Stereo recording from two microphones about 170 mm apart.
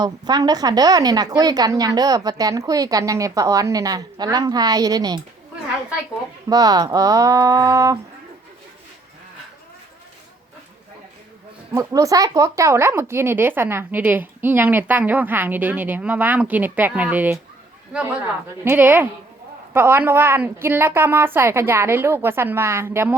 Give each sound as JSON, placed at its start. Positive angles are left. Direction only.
{"t": 0.0, "sound": "a woman's voice", "side_deg": -25}
{"t": 6.5, "sound": "a woman's voice", "side_deg": -20}
{"t": 11.7, "sound": "speech", "side_deg": -20}
{"t": 18.6, "sound": "speech", "side_deg": -10}